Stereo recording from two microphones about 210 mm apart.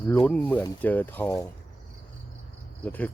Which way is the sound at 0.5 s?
10° left (ahead or behind).